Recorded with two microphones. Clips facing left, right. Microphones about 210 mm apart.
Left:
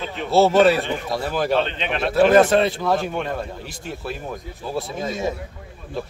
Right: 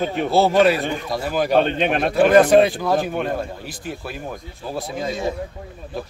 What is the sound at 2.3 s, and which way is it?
A man's voice, centre (ahead or behind).